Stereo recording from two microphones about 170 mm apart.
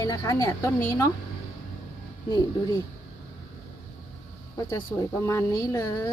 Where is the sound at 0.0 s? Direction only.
20° left (ahead or behind).